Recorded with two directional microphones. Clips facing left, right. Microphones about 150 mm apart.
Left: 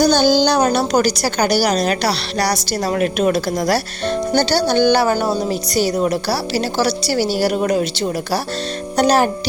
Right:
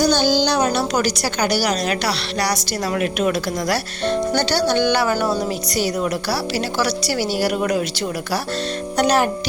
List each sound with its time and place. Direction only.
0.0 s a woman's voice: 45° left (ahead or behind)
9.0 s music: 35° left (ahead or behind)